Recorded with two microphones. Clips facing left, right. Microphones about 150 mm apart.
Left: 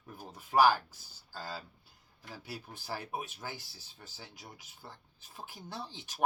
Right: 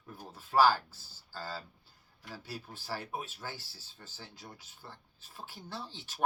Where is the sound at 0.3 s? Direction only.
15° left (ahead or behind).